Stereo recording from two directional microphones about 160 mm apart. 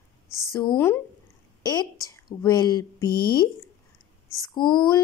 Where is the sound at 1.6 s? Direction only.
25° left (ahead or behind).